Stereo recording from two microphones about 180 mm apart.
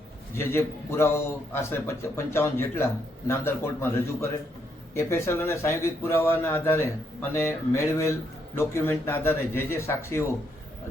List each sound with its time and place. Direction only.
0.3 s a man's voice: 15° left (ahead or behind)